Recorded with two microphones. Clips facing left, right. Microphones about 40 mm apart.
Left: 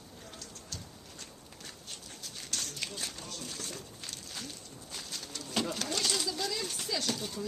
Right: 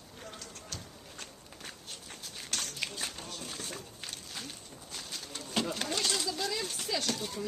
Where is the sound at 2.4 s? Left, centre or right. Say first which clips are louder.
Right 2 dB; right.